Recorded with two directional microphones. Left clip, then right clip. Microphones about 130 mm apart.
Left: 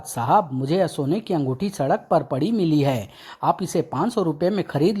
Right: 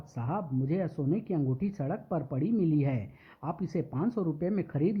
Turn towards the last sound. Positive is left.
turn(degrees=30)  # may be behind; listen again after turning